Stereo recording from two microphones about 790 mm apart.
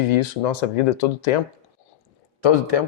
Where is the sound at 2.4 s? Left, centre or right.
Left.